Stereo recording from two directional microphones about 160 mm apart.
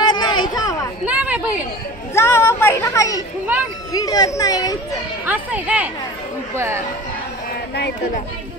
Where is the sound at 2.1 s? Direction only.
15° left (ahead or behind).